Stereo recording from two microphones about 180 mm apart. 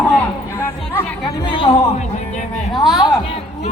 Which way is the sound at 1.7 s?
35° left (ahead or behind).